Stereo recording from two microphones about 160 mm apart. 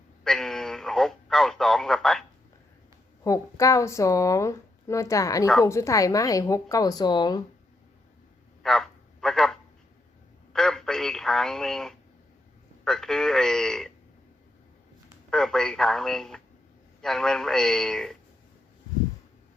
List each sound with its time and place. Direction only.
0.3 s radio: 5° left (ahead or behind)
3.2 s a woman's voice: 20° left (ahead or behind)
8.6 s a sound: centre (ahead or behind)
10.5 s telephone: 5° left (ahead or behind)
12.8 s a man's voice: 5° left (ahead or behind)
15.3 s a man's voice: 5° left (ahead or behind)